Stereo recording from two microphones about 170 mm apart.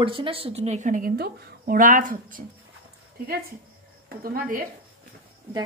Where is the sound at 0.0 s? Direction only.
30° right (ahead or behind); by 2.4 s 50° right (ahead or behind).